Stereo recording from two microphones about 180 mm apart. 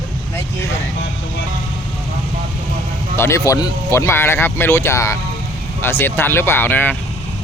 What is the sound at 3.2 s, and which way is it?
Speech, 15° left (ahead or behind).